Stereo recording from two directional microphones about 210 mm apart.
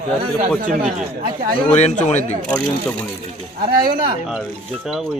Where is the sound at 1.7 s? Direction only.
30° left (ahead or behind).